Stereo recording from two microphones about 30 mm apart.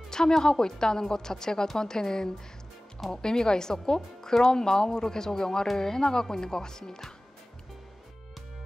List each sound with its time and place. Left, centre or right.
0.4 s speech: left